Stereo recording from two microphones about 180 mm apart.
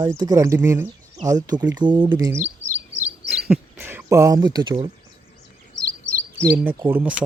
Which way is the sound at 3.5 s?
10° right (ahead or behind).